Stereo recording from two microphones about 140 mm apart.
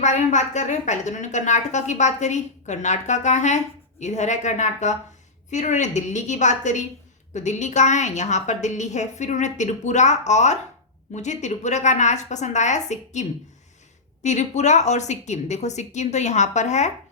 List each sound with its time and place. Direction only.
0.0 s a woman's voice: 60° left (ahead or behind)